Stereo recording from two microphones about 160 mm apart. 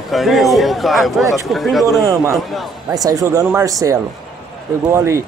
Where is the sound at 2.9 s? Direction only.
20° right (ahead or behind).